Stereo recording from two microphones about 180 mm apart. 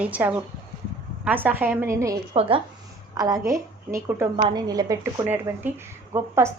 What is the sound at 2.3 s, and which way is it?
A woman's voice, 30° right (ahead or behind).